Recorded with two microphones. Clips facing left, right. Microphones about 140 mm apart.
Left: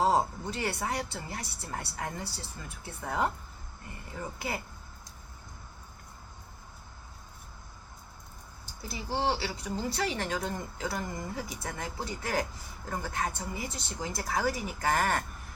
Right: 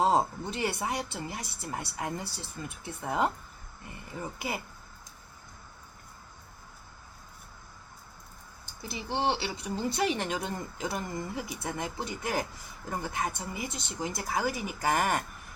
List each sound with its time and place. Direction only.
0.0 s speech: 20° right (ahead or behind)
4.4 s speech: 15° right (ahead or behind)
8.9 s speech: 20° right (ahead or behind)